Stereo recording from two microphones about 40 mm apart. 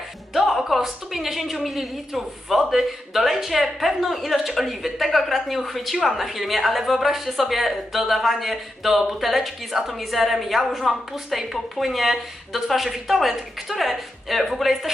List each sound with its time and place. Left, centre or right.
0.3 s music: centre
0.7 s a woman's voice: centre